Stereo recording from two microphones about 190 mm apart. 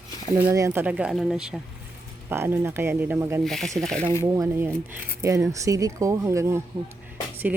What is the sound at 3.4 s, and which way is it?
Speech, centre (ahead or behind).